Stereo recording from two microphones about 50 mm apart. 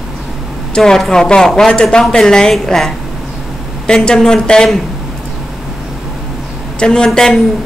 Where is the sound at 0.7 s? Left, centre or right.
Centre.